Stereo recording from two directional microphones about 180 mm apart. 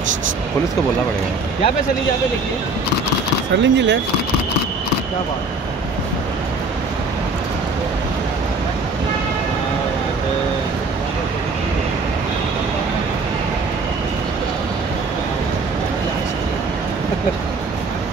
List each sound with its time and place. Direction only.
3.5 s speech: 85° right